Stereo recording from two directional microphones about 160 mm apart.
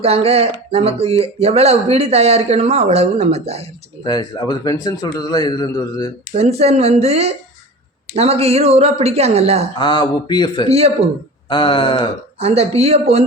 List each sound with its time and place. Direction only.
0.0 s speech: 40° right (ahead or behind)
4.0 s a man's voice: 25° left (ahead or behind)
6.3 s speech: 40° right (ahead or behind)
9.7 s a man's voice: 30° left (ahead or behind)
10.7 s speech: 40° right (ahead or behind)
11.4 s speech: 35° left (ahead or behind)
12.4 s speech: 40° right (ahead or behind)